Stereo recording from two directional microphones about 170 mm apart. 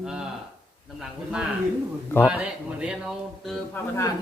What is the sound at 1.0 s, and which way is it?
A man's voice, 5° right (ahead or behind).